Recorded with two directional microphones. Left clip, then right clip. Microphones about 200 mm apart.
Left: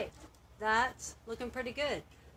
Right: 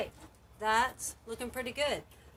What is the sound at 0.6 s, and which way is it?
Speech, 20° left (ahead or behind).